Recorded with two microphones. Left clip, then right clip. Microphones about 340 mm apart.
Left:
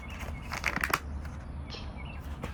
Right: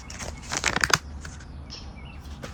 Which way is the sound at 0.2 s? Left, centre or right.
Right.